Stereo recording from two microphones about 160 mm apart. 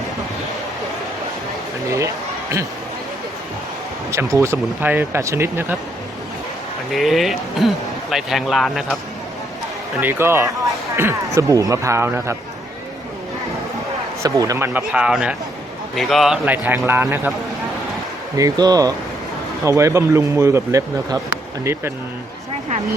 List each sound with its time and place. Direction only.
4.1 s speech: 20° right (ahead or behind)
6.9 s a man's voice: centre (ahead or behind)
10.0 s speech: 15° right (ahead or behind)
14.2 s speech: 20° right (ahead or behind)
18.3 s speech: 25° right (ahead or behind)